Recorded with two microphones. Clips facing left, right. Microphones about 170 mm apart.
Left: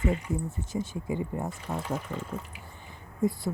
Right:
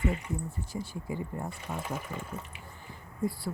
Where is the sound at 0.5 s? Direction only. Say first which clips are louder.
Left 4 dB; 20° left (ahead or behind).